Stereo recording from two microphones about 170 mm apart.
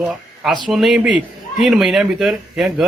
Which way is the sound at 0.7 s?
Centre (ahead or behind).